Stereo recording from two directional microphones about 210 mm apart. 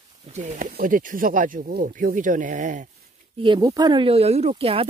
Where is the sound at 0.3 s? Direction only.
35° right (ahead or behind).